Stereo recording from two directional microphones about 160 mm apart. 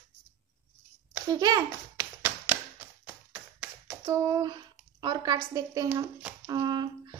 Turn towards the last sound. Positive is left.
turn(degrees=-25)  # may be behind; listen again after turning